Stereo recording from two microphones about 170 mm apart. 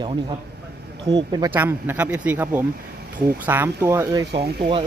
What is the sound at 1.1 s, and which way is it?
Speech, 25° right (ahead or behind).